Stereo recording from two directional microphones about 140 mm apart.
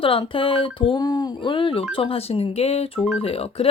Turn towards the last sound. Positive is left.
turn(degrees=45)  # may be behind; listen again after turning